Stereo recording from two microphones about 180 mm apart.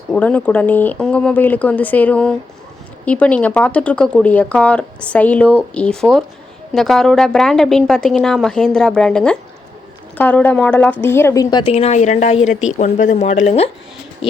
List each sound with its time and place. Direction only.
0.1 s speech: 10° left (ahead or behind)
11.7 s speech: 35° left (ahead or behind)